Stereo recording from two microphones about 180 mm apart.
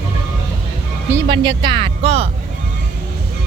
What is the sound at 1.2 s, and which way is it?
Speech, 25° right (ahead or behind).